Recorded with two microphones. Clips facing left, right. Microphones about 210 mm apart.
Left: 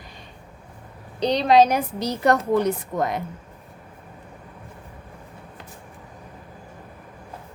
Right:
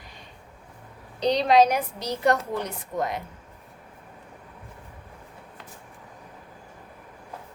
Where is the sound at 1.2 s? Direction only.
30° left (ahead or behind).